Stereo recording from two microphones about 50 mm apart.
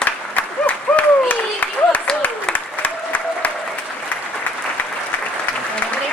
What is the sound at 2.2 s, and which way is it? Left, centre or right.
Applause, left.